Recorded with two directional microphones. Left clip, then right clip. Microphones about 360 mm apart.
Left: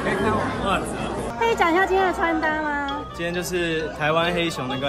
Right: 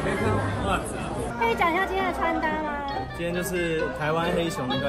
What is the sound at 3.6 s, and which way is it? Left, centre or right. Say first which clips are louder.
Speech: left 3 dB; centre.